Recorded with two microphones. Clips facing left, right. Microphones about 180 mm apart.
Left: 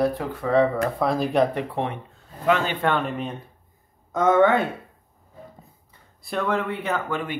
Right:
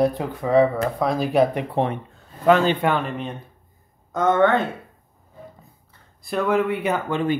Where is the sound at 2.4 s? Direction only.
35° right (ahead or behind).